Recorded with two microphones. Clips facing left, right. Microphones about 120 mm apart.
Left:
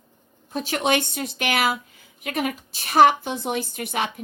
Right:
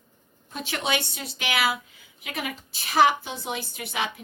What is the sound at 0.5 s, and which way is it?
A woman's voice, 45° left (ahead or behind).